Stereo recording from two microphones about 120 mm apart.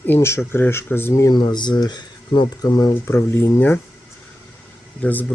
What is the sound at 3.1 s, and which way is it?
Speech, 20° left (ahead or behind).